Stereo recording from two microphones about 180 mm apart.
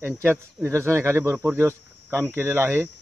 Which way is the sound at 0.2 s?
10° right (ahead or behind).